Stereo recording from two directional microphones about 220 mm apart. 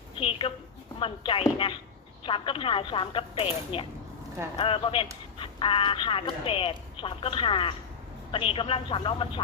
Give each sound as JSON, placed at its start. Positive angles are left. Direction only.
{"t": 0.2, "sound": "speech", "side_deg": 25}